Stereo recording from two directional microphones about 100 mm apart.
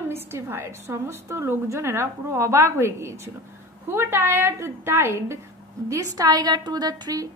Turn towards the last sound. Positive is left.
turn(degrees=-40)  # may be behind; listen again after turning